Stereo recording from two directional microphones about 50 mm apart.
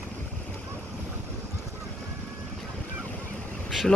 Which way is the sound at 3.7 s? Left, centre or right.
Centre.